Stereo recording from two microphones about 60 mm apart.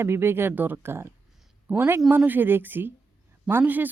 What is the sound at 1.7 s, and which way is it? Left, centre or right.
Speech, right.